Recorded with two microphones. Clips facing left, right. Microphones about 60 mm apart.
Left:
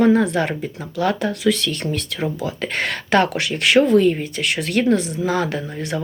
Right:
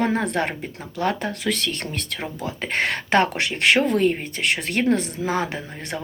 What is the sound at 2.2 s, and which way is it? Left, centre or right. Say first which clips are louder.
Speech: left 5 dB; right.